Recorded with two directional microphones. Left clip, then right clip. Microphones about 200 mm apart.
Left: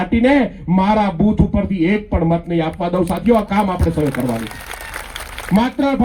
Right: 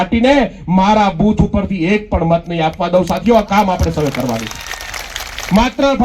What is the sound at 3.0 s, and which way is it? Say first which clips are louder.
Speech: right 2 dB; 45° right (ahead or behind).